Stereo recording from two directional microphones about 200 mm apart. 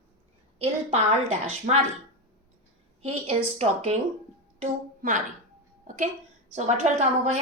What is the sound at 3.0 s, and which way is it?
A woman's voice, 30° right (ahead or behind).